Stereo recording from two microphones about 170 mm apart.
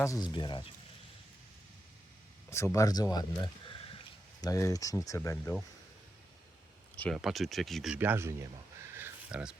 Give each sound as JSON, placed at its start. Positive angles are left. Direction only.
{"t": 0.0, "sound": "speech", "side_deg": 20}
{"t": 2.7, "sound": "speech", "side_deg": 20}
{"t": 4.4, "sound": "speech", "side_deg": 20}
{"t": 6.9, "sound": "speech", "side_deg": 10}
{"t": 7.2, "sound": "speech", "side_deg": 0}
{"t": 7.9, "sound": "speech", "side_deg": -15}
{"t": 8.9, "sound": "a sound", "side_deg": -10}